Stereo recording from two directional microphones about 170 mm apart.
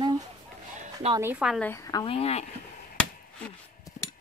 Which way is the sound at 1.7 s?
20° left (ahead or behind).